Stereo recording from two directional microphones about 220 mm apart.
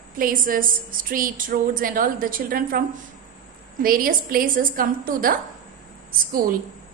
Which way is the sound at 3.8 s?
40° right (ahead or behind).